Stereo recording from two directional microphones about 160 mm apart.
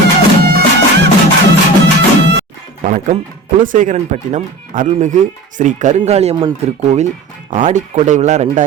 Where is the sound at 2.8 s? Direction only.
50° right (ahead or behind).